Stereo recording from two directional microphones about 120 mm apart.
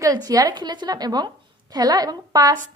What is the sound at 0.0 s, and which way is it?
A woman's voice, 30° right (ahead or behind).